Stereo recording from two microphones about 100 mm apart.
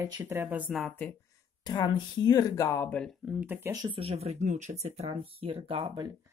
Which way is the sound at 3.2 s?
15° right (ahead or behind).